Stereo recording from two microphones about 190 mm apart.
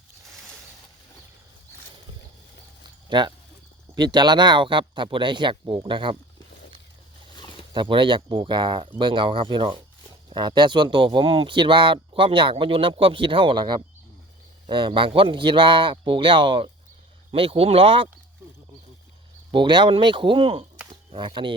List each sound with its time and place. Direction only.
3.1 s speech: 25° right (ahead or behind)
7.3 s bird: 25° left (ahead or behind)
7.7 s speech: 25° right (ahead or behind)
19.5 s speech: 25° right (ahead or behind)
20.9 s a sound: 25° right (ahead or behind)